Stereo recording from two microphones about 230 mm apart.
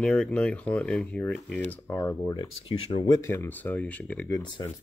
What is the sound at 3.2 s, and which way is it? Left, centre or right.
Speech, centre.